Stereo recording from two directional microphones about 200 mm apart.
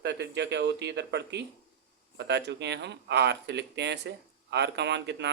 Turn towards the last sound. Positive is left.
turn(degrees=-60)  # may be behind; listen again after turning